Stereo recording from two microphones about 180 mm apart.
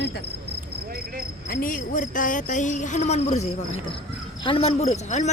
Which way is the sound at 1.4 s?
50° left (ahead or behind).